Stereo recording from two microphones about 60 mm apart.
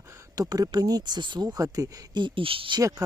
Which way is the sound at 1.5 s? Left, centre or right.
Right.